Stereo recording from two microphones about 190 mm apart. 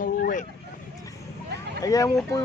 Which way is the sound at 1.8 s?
20° left (ahead or behind).